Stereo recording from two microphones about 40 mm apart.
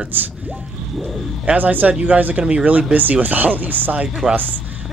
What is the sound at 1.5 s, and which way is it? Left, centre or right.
Speech, right.